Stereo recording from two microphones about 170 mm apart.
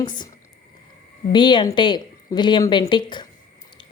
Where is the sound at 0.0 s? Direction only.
25° left (ahead or behind).